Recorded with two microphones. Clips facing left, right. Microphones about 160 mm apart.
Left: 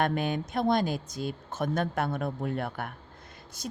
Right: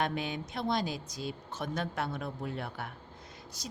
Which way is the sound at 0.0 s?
50° left (ahead or behind).